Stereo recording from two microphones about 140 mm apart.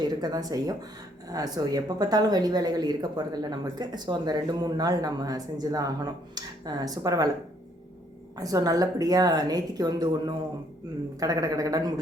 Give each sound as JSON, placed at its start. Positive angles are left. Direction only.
{"t": 0.0, "sound": "speech", "side_deg": -30}
{"t": 8.4, "sound": "speech", "side_deg": -25}